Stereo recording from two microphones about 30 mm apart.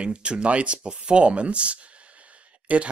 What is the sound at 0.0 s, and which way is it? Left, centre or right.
Speech, right.